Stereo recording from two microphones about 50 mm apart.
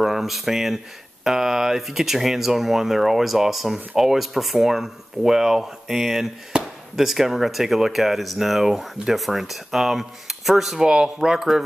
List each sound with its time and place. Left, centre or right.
0.0 s speech: centre
6.5 s chop: right
7.0 s speech: centre